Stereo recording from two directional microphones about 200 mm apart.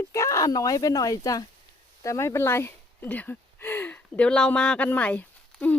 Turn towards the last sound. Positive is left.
turn(degrees=5)  # may be behind; listen again after turning